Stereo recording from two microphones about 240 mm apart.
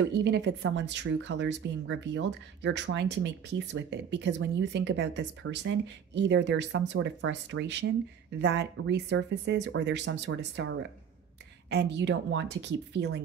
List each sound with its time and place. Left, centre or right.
0.2 s speech: right